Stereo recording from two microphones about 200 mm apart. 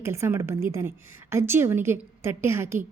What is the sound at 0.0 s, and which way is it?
Speech, 15° right (ahead or behind).